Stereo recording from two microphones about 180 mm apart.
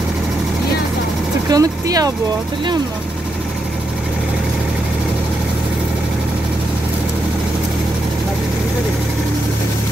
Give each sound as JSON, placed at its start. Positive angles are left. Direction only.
{"t": 1.5, "sound": "speech", "side_deg": -20}